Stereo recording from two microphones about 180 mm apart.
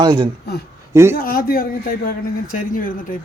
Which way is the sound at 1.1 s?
55° left (ahead or behind).